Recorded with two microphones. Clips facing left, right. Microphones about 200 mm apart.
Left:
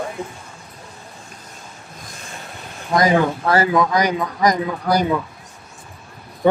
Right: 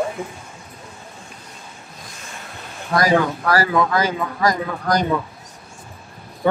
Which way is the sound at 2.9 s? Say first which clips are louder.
Left 1 dB; 20° left (ahead or behind).